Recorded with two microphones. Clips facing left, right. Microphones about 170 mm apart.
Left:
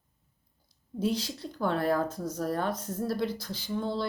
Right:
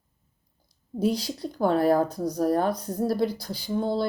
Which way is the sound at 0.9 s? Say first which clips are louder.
Right 4 dB; 35° right (ahead or behind).